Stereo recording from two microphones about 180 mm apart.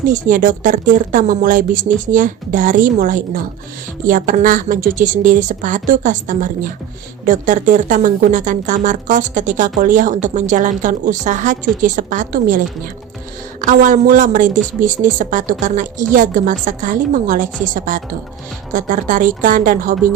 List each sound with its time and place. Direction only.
0.0 s speech: 45° right (ahead or behind)